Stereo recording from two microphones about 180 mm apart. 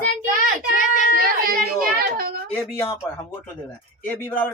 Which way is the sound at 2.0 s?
55° right (ahead or behind).